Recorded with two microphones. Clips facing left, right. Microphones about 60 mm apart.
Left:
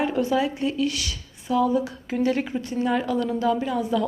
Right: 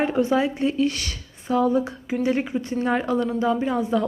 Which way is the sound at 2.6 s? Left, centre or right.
Right.